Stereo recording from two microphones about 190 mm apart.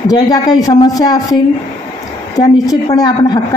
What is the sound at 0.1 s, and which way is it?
A man's voice, 20° left (ahead or behind).